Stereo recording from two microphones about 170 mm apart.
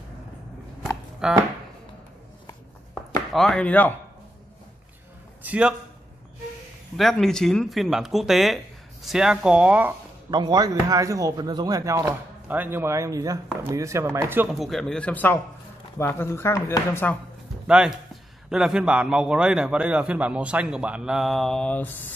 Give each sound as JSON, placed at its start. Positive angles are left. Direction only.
{"t": 1.2, "sound": "a man's voice", "side_deg": -5}
{"t": 3.3, "sound": "speech", "side_deg": 5}
{"t": 5.4, "sound": "a man's voice", "side_deg": -10}
{"t": 7.0, "sound": "a man's voice", "side_deg": 0}
{"t": 10.3, "sound": "speech", "side_deg": -25}
{"t": 14.5, "sound": "a man's voice", "side_deg": 0}
{"t": 17.6, "sound": "a man's voice", "side_deg": -5}